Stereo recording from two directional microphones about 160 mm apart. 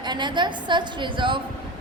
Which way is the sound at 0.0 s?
30° right (ahead or behind).